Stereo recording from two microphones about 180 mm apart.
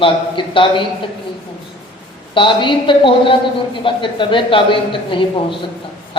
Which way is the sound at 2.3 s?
30° left (ahead or behind).